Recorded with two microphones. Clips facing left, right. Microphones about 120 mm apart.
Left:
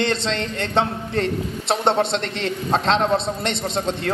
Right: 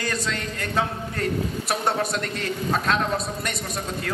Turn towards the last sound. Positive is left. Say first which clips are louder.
# left 7 dB
turn(degrees=25)  # may be behind; listen again after turning